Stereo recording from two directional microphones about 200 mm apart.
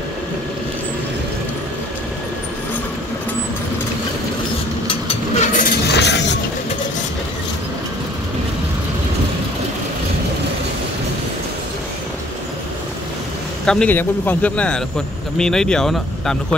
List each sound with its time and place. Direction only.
4.8 s vehicle: 30° left (ahead or behind)
5.9 s a sound: 60° left (ahead or behind)
13.7 s speech: 5° left (ahead or behind)